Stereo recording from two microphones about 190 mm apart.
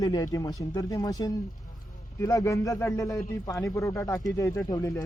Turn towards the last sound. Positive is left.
turn(degrees=20)  # may be behind; listen again after turning